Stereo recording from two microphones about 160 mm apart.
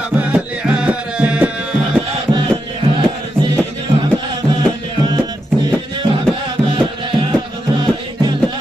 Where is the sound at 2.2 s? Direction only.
30° right (ahead or behind).